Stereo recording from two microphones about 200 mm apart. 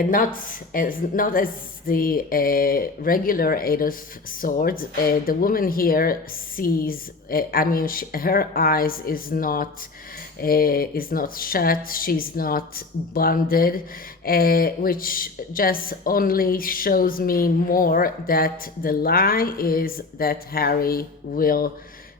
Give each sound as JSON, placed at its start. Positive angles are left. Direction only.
{"t": 0.4, "sound": "speech", "side_deg": 45}